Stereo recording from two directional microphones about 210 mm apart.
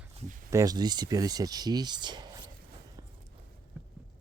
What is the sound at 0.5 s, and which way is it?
Speech, 15° right (ahead or behind).